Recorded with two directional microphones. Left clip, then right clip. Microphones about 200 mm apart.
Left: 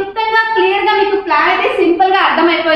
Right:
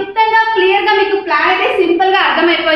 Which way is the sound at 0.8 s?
10° right (ahead or behind).